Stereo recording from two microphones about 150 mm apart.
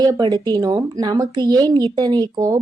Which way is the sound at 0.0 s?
25° right (ahead or behind).